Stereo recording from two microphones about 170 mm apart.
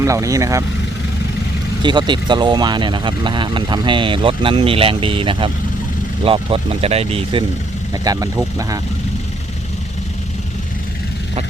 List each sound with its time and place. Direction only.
0.0 s speech: 20° right (ahead or behind)
1.8 s speech: 25° right (ahead or behind)
8.0 s speech: 20° right (ahead or behind)